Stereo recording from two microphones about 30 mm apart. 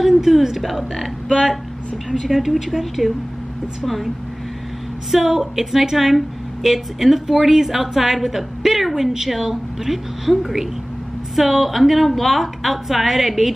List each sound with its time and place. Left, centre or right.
0.2 s a woman's voice: centre
0.7 s a woman's voice: centre
2.1 s a woman's voice: centre
5.1 s a woman's voice: centre